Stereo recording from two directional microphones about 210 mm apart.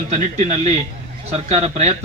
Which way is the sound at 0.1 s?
30° right (ahead or behind).